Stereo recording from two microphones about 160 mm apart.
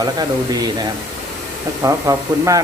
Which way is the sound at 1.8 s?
20° right (ahead or behind).